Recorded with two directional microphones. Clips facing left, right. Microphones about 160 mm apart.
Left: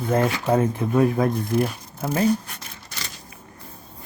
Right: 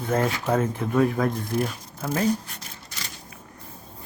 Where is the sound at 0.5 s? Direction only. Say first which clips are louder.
Left 3 dB; 20° left (ahead or behind).